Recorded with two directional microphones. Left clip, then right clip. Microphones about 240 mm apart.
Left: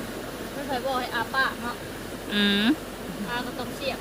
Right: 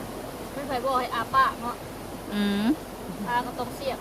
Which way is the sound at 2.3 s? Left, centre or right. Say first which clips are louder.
Left 4 dB; centre.